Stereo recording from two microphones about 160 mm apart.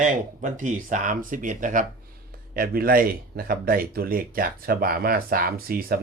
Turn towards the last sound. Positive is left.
turn(degrees=-70)  # may be behind; listen again after turning